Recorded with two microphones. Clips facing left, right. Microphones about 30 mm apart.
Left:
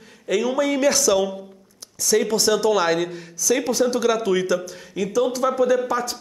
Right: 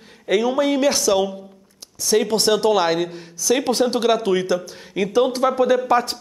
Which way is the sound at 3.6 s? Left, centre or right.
Right.